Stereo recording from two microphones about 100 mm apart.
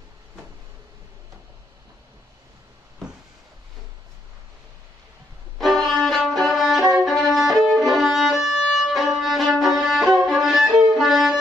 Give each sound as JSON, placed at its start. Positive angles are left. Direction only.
{"t": 5.6, "sound": "violin", "side_deg": 0}
{"t": 6.8, "sound": "violin", "side_deg": -35}
{"t": 7.1, "sound": "violin", "side_deg": 0}
{"t": 9.6, "sound": "music", "side_deg": 0}